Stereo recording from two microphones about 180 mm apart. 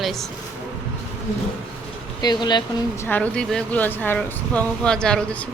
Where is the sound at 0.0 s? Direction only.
Centre (ahead or behind).